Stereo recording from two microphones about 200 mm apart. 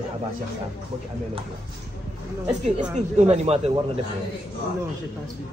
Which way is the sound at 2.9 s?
35° right (ahead or behind).